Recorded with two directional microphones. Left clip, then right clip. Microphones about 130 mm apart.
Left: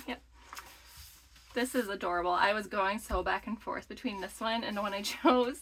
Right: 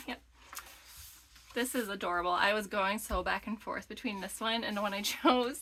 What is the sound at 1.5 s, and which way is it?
Speech, 30° right (ahead or behind).